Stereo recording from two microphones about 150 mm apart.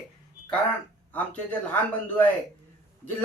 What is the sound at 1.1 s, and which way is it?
A man's voice, 10° left (ahead or behind).